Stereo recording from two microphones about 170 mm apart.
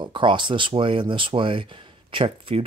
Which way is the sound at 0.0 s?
30° right (ahead or behind).